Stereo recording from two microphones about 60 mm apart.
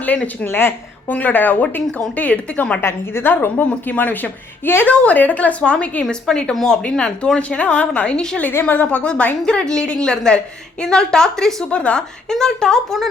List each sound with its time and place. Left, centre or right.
0.3 s a woman's voice: left
2.8 s a woman's voice: left; by 8.4 s centre
8.7 s a woman's voice: left; by 13.1 s centre